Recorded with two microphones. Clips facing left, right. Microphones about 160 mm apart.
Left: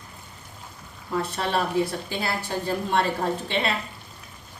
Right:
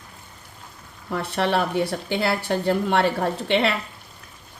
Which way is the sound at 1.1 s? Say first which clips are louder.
Right 3 dB; 70° right (ahead or behind).